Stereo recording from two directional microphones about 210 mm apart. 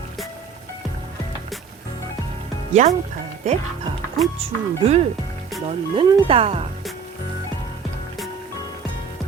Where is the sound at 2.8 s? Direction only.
35° right (ahead or behind).